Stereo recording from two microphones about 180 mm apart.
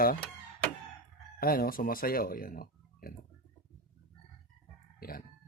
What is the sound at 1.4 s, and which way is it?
Speech, 55° left (ahead or behind).